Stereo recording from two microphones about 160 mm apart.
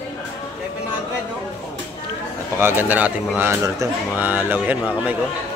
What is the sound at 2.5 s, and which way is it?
Speech, 15° right (ahead or behind).